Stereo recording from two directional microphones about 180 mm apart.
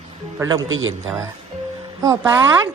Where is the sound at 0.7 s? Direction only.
90° right.